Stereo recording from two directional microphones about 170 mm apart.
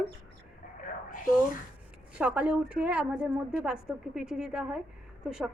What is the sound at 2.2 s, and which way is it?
A woman's voice, 5° right (ahead or behind).